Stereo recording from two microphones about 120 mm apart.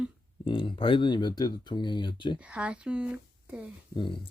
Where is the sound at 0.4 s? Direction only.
45° left (ahead or behind).